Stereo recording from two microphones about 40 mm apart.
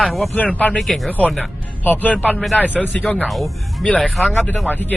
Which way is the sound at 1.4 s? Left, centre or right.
Left.